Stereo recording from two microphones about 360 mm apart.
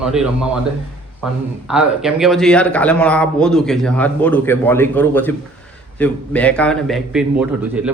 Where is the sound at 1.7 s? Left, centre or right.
Centre.